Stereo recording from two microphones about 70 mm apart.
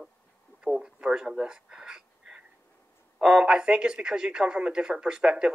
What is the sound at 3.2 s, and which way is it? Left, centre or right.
A man's voice, centre.